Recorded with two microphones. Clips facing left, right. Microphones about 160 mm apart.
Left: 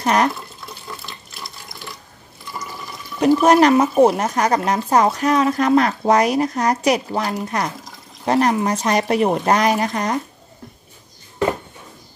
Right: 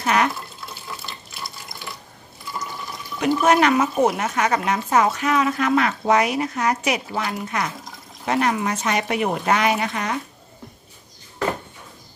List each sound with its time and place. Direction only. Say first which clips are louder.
0.0 s speech: left 3 dB; 35° left (ahead or behind)
0.7 s water: left 2 dB; centre (ahead or behind)
3.2 s speech: left 5 dB; 35° left (ahead or behind)